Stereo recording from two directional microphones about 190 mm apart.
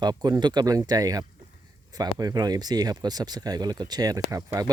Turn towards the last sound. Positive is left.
turn(degrees=-20)  # may be behind; listen again after turning